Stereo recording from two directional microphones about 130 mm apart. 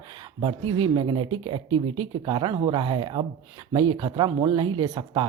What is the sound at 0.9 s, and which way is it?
Speech, 40° right (ahead or behind).